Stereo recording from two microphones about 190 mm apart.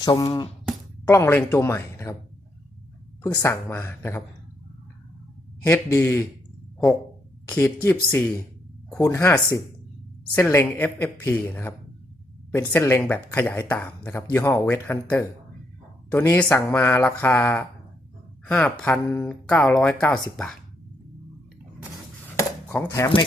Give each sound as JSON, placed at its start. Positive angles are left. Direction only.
{"t": 0.0, "sound": "speech", "side_deg": 20}
{"t": 3.2, "sound": "speech", "side_deg": 15}
{"t": 5.6, "sound": "speech", "side_deg": 10}
{"t": 7.5, "sound": "speech", "side_deg": 10}
{"t": 22.4, "sound": "cutlery", "side_deg": 10}